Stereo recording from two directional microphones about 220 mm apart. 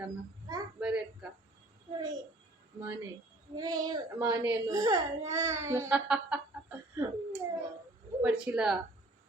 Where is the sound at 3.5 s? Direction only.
20° right (ahead or behind).